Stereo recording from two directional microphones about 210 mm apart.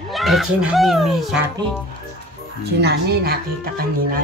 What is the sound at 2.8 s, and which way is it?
Speech, 50° right (ahead or behind).